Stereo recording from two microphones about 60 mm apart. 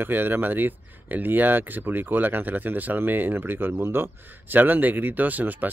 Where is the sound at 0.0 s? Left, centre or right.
Right.